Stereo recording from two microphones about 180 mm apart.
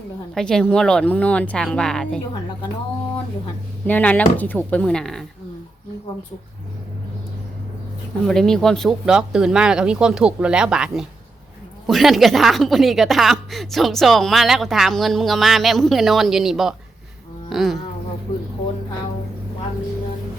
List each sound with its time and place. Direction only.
0.3 s speech: 5° left (ahead or behind)
3.8 s speech: 10° left (ahead or behind)
8.2 s speech: centre (ahead or behind)